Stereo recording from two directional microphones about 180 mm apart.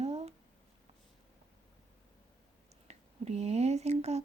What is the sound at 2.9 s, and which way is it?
Speech, 35° right (ahead or behind).